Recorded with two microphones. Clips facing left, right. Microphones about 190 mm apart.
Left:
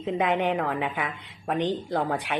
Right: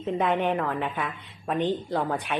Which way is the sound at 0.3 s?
15° left (ahead or behind).